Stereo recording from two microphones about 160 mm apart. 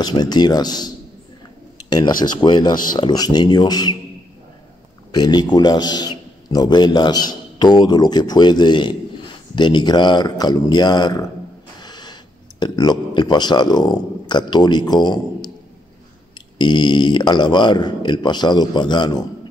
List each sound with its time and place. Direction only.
0.0 s a man's voice: 25° left (ahead or behind)
5.1 s a man's voice: 25° left (ahead or behind)